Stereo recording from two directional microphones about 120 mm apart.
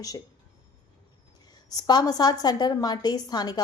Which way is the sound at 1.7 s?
35° left (ahead or behind).